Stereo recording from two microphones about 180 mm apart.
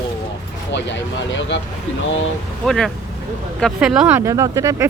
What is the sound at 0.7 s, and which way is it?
Speech, 85° left.